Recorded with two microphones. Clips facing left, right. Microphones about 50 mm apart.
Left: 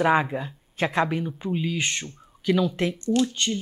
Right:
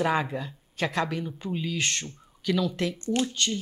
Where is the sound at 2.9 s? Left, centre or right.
Right.